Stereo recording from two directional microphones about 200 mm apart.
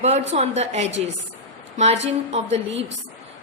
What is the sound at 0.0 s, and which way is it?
A woman's voice, 35° right (ahead or behind).